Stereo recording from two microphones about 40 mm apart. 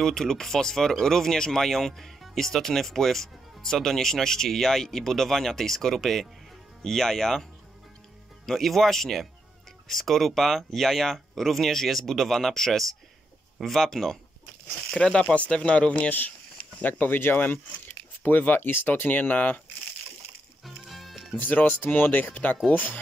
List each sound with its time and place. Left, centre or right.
0.0 s speech: centre
8.5 s speech: centre
14.9 s speech: left
16.8 s speech: left
20.6 s music: centre
21.4 s speech: left
21.8 s speech: left